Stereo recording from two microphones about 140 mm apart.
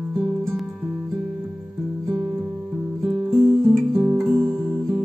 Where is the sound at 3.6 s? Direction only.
15° right (ahead or behind).